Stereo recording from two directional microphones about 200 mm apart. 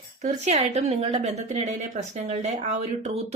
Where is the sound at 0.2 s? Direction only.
35° right (ahead or behind).